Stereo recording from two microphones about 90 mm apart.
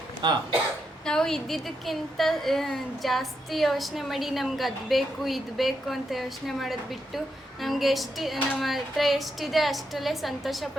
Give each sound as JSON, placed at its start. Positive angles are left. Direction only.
{"t": 0.2, "sound": "speech", "side_deg": -55}
{"t": 1.0, "sound": "a woman's voice", "side_deg": 5}